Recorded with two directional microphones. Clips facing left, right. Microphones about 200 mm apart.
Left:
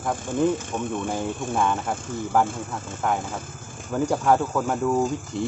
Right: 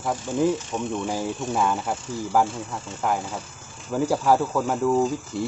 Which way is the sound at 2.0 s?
50° left (ahead or behind).